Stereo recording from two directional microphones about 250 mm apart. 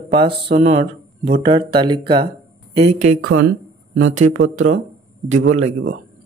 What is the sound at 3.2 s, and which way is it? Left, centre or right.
Speech, right.